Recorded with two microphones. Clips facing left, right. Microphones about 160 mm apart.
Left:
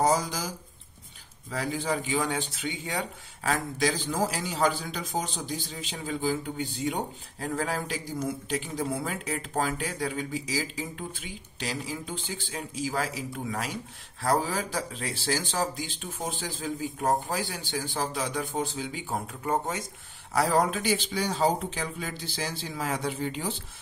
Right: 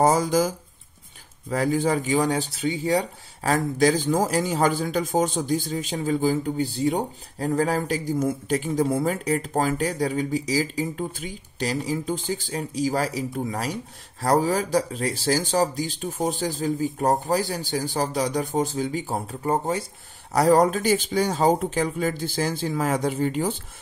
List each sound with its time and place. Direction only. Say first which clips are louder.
0.0 s speech: right 6 dB; 50° right (ahead or behind)
1.5 s speech: right 8 dB; 45° right (ahead or behind)